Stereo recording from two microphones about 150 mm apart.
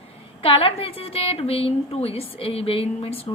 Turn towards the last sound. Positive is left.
turn(degrees=40)  # may be behind; listen again after turning